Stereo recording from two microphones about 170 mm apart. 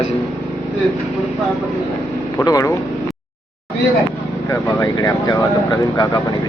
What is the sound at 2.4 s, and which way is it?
Speech, 20° left (ahead or behind).